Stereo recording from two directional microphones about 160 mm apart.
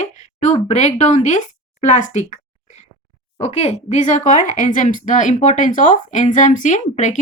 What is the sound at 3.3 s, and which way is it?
Speech, 40° left (ahead or behind).